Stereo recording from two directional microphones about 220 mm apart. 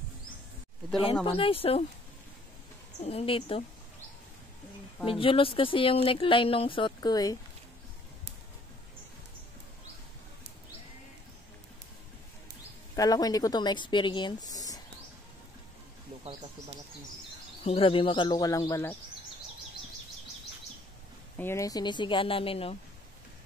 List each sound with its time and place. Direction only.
1.2 s speech: 25° left (ahead or behind)
3.0 s speech: 25° left (ahead or behind)
5.0 s speech: 25° left (ahead or behind)
12.9 s speech: 15° left (ahead or behind)
17.6 s speech: 25° left (ahead or behind)
21.4 s speech: 10° left (ahead or behind)